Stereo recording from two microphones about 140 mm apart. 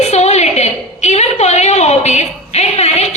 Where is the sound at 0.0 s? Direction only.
50° left (ahead or behind).